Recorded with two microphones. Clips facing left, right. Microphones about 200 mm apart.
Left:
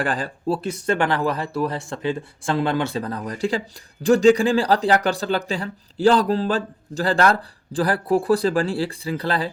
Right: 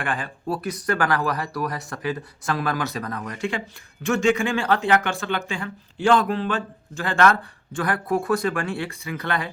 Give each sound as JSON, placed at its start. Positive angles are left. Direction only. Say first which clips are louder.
{"t": 0.0, "sound": "speech", "louder": "left 4 dB", "side_deg": 35}